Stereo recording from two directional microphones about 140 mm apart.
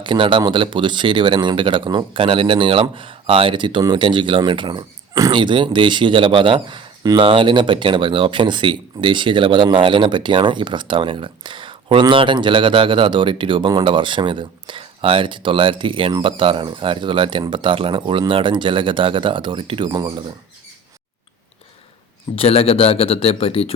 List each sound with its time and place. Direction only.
0.0 s speech: 35° right (ahead or behind)
22.4 s speech: 45° left (ahead or behind)